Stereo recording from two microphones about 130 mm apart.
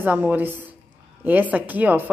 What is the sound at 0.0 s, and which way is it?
A woman's voice, 15° right (ahead or behind).